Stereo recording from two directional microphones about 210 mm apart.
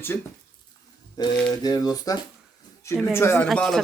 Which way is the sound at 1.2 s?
15° left (ahead or behind).